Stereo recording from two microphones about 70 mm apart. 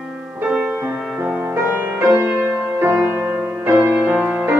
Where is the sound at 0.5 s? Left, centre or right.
Centre.